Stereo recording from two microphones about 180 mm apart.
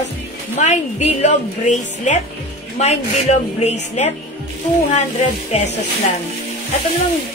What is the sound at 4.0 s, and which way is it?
Speech, 40° left (ahead or behind).